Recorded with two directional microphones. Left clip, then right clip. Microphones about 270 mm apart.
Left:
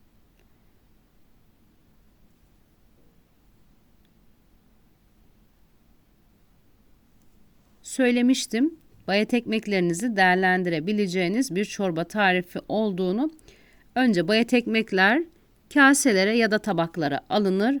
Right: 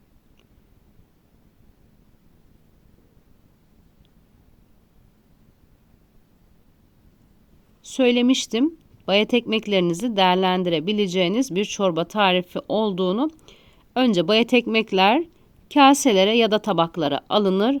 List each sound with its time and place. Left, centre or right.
7.8 s a woman's voice: left
14.6 s speech: left
14.8 s a woman's voice: left